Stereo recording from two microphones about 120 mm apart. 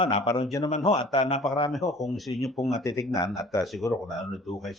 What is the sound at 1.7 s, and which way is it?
Speech, centre (ahead or behind).